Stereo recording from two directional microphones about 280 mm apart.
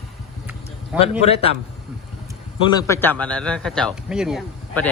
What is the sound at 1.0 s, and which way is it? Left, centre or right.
Speech, left.